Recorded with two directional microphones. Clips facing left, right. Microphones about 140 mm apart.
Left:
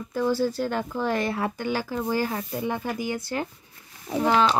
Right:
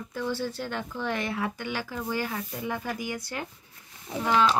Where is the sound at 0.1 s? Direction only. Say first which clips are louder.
Left 7 dB; 40° left (ahead or behind).